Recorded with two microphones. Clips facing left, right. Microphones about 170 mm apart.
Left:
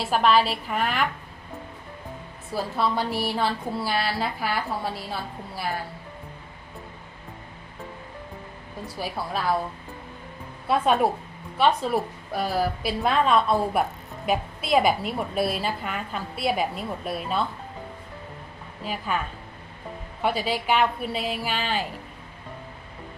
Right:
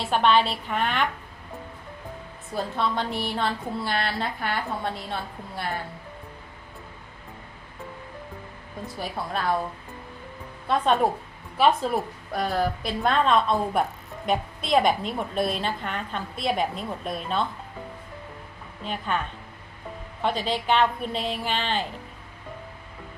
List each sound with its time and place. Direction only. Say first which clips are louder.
0.0 s a woman's voice: even; centre (ahead or behind)
2.5 s a woman's voice: left 1 dB; 5° left (ahead or behind)
9.0 s a woman's voice: left 1 dB; 5° left (ahead or behind)
10.7 s a woman's voice: left 1 dB; 5° left (ahead or behind)
18.9 s a woman's voice: even; 5° left (ahead or behind)
20.2 s a woman's voice: even; 10° left (ahead or behind)